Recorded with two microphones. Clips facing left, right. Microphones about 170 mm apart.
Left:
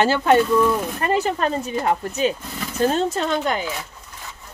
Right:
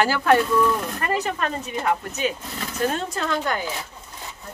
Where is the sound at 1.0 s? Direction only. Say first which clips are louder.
Left 4 dB; 30° left (ahead or behind).